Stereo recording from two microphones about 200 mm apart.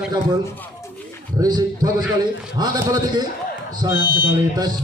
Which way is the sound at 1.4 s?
20° right (ahead or behind).